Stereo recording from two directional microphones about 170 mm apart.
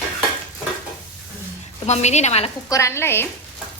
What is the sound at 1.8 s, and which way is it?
Speech, 40° left (ahead or behind).